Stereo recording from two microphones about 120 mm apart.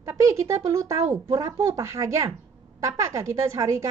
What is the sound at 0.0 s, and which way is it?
A woman's voice, 25° right (ahead or behind).